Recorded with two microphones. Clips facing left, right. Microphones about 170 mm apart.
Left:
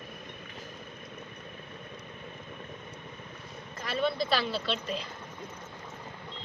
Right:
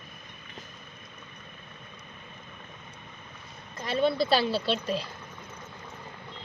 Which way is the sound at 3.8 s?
30° right (ahead or behind).